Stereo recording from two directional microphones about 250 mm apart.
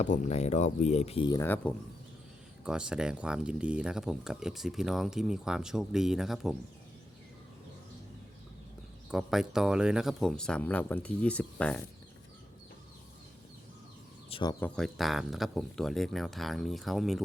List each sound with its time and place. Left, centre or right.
0.0 s speech: left; by 1.7 s centre
2.6 s speech: centre
9.0 s speech: centre
14.3 s speech: left
14.6 s speech: centre